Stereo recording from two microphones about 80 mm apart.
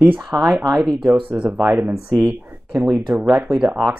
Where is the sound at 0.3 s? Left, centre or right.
Centre.